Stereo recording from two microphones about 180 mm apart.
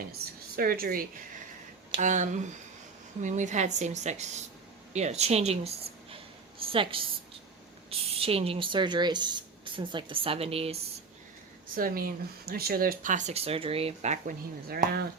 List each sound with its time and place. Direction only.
0.2 s speech: 60° right (ahead or behind)
2.0 s a woman's voice: 45° right (ahead or behind)
11.8 s speech: 55° right (ahead or behind)
14.7 s speech: 55° right (ahead or behind)